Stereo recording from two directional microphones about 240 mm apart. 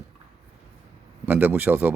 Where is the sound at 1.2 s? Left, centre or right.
Centre.